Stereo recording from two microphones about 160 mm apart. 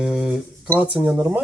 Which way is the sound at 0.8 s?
10° right (ahead or behind).